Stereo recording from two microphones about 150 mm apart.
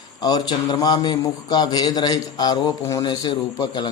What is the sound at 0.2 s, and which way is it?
Speech, 25° left (ahead or behind).